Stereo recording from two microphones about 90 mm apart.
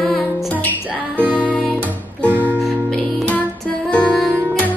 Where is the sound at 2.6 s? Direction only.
10° left (ahead or behind).